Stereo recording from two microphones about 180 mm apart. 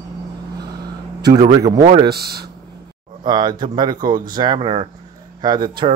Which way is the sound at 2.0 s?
60° right (ahead or behind).